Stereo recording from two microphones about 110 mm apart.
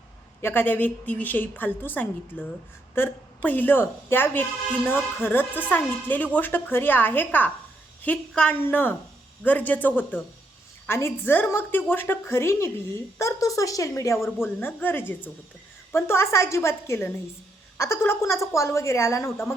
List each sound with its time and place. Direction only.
0.4 s a woman's voice: 20° left (ahead or behind)